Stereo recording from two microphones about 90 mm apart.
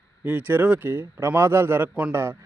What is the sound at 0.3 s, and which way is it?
A man's voice, 20° right (ahead or behind).